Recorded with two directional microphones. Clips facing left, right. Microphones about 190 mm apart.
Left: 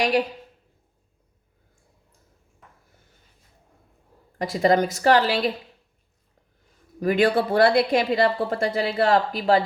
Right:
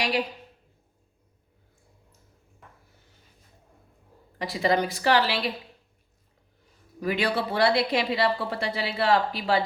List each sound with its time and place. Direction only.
4.4 s a woman's voice: 45° left (ahead or behind)
7.0 s a woman's voice: 45° left (ahead or behind)